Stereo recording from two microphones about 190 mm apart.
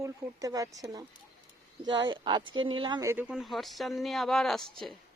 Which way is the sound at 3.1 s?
5° right (ahead or behind).